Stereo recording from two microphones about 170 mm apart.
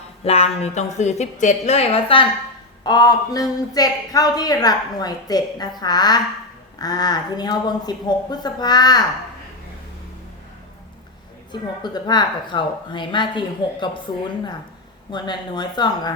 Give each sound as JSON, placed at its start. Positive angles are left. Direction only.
{"t": 0.3, "sound": "a woman's voice", "side_deg": 35}
{"t": 11.8, "sound": "speech", "side_deg": 25}
{"t": 15.1, "sound": "speech", "side_deg": 25}